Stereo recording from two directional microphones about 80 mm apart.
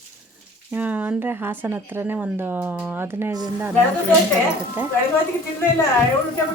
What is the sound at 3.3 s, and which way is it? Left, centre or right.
Speech, right.